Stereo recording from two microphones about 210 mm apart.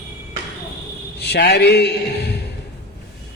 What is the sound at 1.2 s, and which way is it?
A man's voice, 50° left (ahead or behind).